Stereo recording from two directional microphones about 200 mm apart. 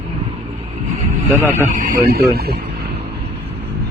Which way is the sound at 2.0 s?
50° right (ahead or behind).